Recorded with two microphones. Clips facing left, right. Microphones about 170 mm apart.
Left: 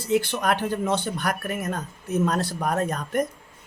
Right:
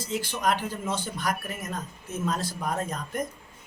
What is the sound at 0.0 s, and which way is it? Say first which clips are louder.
Speech: left 5 dB; 65° left (ahead or behind).